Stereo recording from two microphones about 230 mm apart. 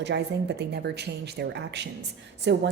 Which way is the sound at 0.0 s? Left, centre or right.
Right.